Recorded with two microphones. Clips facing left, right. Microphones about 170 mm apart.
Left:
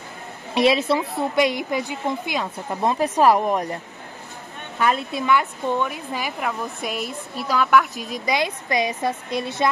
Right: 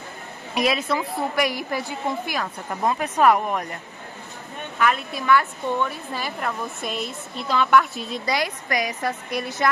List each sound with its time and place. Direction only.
0.6 s a woman's voice: 30° left (ahead or behind)
3.0 s speech: 35° left (ahead or behind)
4.7 s a woman's voice: 30° left (ahead or behind)